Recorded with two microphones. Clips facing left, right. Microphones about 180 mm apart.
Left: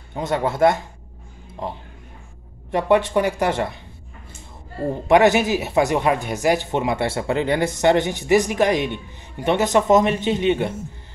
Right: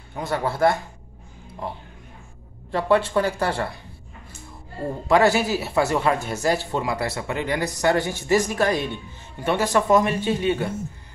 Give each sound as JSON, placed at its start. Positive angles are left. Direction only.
{"t": 0.1, "sound": "speech", "side_deg": 20}
{"t": 2.7, "sound": "speech", "side_deg": 20}
{"t": 5.0, "sound": "speech", "side_deg": 20}